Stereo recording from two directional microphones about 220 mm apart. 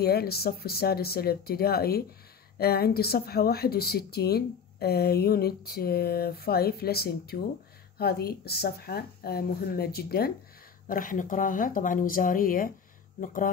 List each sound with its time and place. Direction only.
0.0 s speech: 45° left (ahead or behind)